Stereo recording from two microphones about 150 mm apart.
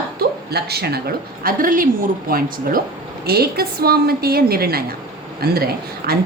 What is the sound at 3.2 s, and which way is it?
A woman's voice, 90° right.